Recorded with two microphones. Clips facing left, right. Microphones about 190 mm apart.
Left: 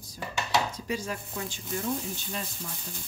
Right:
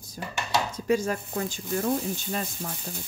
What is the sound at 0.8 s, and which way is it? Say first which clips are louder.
Speech: right 8 dB; 45° right (ahead or behind).